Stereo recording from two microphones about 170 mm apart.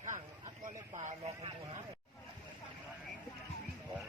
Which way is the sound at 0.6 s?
45° right (ahead or behind).